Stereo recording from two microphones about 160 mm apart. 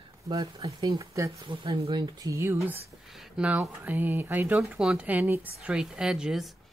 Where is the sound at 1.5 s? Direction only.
35° right (ahead or behind).